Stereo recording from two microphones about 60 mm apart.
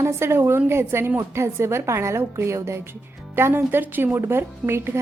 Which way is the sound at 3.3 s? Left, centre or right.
Right.